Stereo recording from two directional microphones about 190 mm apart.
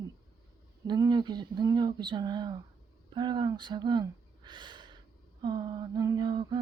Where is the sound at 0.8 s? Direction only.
20° right (ahead or behind).